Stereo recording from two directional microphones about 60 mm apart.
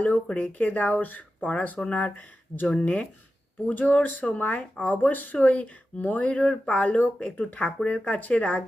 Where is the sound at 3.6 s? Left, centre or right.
Left.